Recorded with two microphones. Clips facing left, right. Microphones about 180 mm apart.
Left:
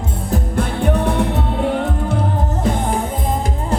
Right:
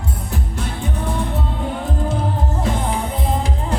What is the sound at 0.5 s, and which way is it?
Music, 65° left (ahead or behind).